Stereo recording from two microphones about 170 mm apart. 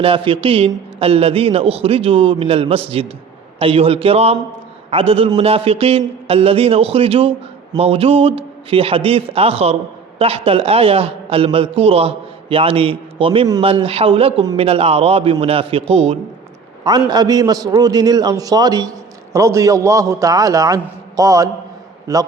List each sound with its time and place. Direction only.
0.0 s a man's voice: 30° right (ahead or behind)
16.8 s a man's voice: 25° right (ahead or behind)